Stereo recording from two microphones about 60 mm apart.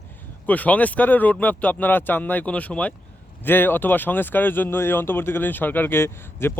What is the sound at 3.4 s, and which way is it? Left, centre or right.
Speech, left.